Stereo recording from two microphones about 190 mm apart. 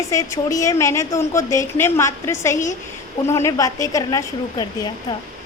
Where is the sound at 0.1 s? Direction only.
15° left (ahead or behind).